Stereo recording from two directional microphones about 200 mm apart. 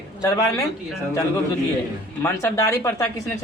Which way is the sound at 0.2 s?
15° left (ahead or behind).